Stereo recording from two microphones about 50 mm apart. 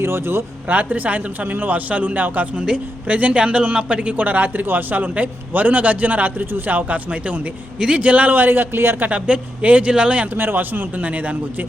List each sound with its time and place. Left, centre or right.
0.0 s speech: right
0.7 s a man's voice: right
2.6 s a man's voice: right
4.2 s a man's voice: right
7.8 s a man's voice: centre
8.0 s a man's voice: right
9.0 s a man's voice: right
10.3 s a man's voice: right
11.0 s a man's voice: right